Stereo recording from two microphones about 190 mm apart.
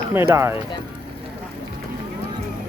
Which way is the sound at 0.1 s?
15° right (ahead or behind).